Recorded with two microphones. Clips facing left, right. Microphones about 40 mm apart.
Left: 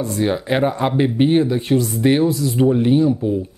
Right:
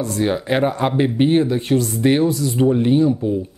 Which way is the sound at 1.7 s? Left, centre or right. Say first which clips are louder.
Left 1 dB; left.